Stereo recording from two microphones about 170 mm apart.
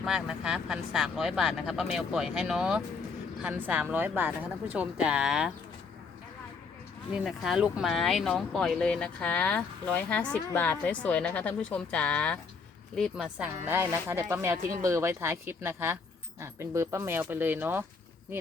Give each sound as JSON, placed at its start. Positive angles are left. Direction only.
{"t": 0.0, "sound": "speech", "side_deg": -5}
{"t": 7.1, "sound": "speech", "side_deg": -5}
{"t": 13.0, "sound": "speech", "side_deg": -5}